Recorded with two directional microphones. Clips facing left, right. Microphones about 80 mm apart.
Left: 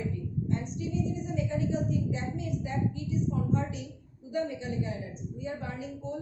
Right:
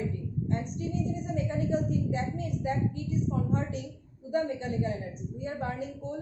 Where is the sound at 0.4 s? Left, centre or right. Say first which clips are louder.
Right 2 dB; right.